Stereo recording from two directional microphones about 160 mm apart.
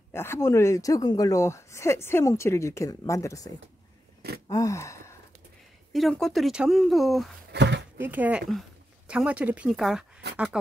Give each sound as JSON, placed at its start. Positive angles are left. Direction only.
{"t": 0.1, "sound": "speech", "side_deg": 15}
{"t": 4.5, "sound": "gasp", "side_deg": 20}
{"t": 5.9, "sound": "speech", "side_deg": 0}
{"t": 7.5, "sound": "speech", "side_deg": -90}
{"t": 8.0, "sound": "speech", "side_deg": -10}